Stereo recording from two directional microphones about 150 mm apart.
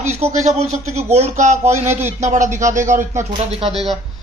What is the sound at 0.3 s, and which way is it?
Speech, 45° right (ahead or behind).